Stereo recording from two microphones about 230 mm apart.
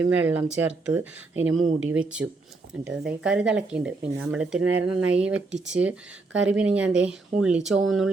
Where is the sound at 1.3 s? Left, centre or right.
Right.